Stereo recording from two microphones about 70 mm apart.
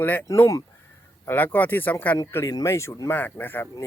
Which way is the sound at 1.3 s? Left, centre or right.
Left.